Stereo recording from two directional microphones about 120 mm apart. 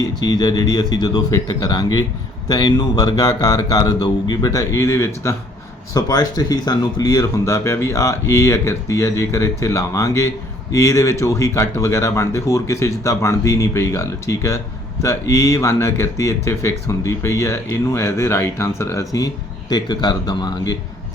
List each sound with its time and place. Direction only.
0.0 s speech: 35° left (ahead or behind)
5.9 s speech: 30° left (ahead or behind)